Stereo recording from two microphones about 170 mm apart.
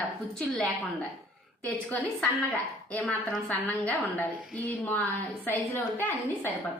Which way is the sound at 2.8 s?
5° left (ahead or behind).